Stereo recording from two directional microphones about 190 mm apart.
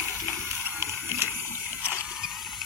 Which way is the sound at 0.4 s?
15° right (ahead or behind).